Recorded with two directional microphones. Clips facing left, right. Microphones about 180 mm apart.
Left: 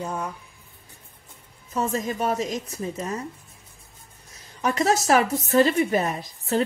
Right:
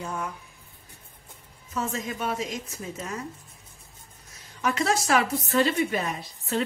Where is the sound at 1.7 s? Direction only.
35° left (ahead or behind).